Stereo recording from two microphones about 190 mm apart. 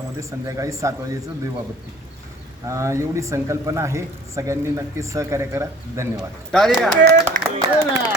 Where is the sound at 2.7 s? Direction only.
15° right (ahead or behind).